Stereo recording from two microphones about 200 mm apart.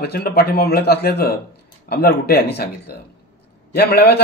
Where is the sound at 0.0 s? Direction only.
50° left (ahead or behind).